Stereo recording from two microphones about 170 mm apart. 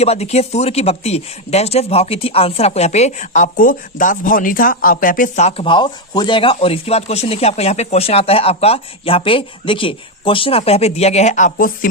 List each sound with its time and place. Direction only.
0.0 s speech: 40° left (ahead or behind); by 11.9 s 55° left (ahead or behind)